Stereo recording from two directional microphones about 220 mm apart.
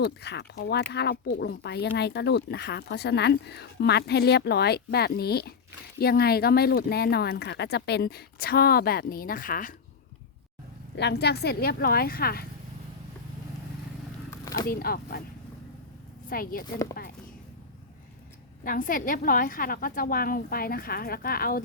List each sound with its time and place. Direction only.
0.0 s speech: 50° left (ahead or behind)
10.9 s speech: 50° left (ahead or behind)
14.4 s a sound: 15° left (ahead or behind)
14.7 s speech: 45° left (ahead or behind)
16.3 s a woman's voice: 40° left (ahead or behind)
18.6 s a woman's voice: 40° left (ahead or behind)